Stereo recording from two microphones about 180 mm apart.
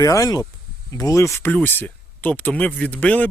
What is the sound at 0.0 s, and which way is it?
Speech, 20° left (ahead or behind).